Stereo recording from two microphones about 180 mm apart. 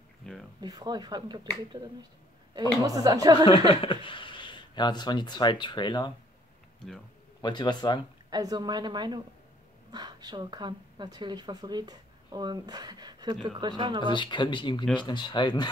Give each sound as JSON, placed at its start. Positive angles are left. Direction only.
{"t": 0.2, "sound": "a sound", "side_deg": 5}
{"t": 0.6, "sound": "speech", "side_deg": -20}
{"t": 3.4, "sound": "speech", "side_deg": 30}
{"t": 7.4, "sound": "speech", "side_deg": 25}
{"t": 8.3, "sound": "speech", "side_deg": -20}
{"t": 14.0, "sound": "speech", "side_deg": 25}